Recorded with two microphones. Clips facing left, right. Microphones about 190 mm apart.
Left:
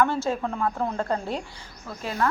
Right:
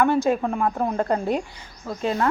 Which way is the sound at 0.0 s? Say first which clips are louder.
Right 4 dB; 15° right (ahead or behind).